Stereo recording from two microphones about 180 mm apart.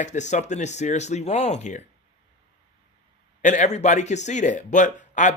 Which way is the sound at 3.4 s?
40° left (ahead or behind).